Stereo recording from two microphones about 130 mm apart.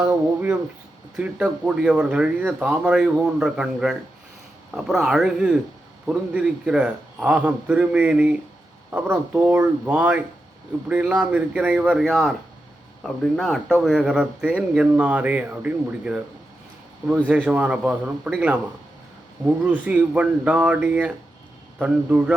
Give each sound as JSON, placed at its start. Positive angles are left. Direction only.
{"t": 0.0, "sound": "speech", "side_deg": -15}
{"t": 19.6, "sound": "speech", "side_deg": -10}